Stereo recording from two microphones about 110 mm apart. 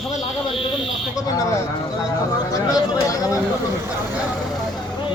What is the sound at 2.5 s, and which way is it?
Speech, 30° left (ahead or behind).